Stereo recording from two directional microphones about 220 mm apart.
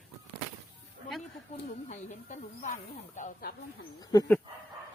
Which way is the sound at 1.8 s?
30° left (ahead or behind).